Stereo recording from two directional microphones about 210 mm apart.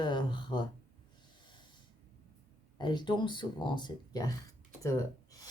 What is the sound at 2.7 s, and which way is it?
Speech, 20° left (ahead or behind).